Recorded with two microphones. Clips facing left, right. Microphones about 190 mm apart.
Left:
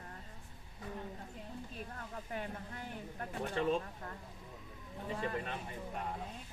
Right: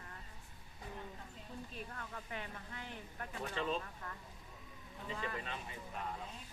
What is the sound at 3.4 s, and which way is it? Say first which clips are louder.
Speech: left 5 dB; 55° left (ahead or behind).